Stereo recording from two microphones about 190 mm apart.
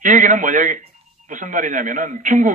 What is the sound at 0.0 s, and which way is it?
A man's voice, 40° right (ahead or behind).